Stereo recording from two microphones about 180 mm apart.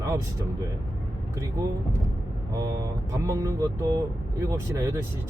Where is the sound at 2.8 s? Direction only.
15° right (ahead or behind).